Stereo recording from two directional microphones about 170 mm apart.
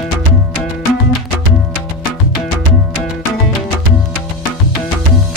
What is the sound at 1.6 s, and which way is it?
Music, centre (ahead or behind).